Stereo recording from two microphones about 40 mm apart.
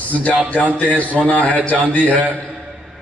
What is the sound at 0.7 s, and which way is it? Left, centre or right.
A man's voice, left.